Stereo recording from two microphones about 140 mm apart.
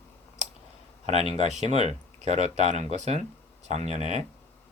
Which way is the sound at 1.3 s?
55° right (ahead or behind).